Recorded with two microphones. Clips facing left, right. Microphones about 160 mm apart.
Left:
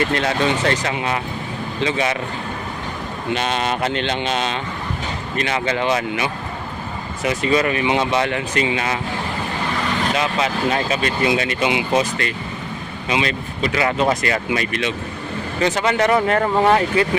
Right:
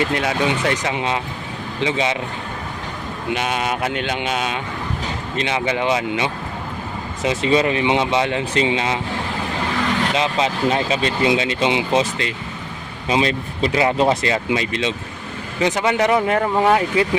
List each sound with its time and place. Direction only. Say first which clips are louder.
0.1 s speech: left 1 dB; 10° right (ahead or behind)
3.3 s speech: left 1 dB; 10° right (ahead or behind)
10.2 s speech: right 1 dB; 25° right (ahead or behind)
13.1 s speech: right 3 dB; 35° right (ahead or behind); by 17.1 s 5° right (ahead or behind)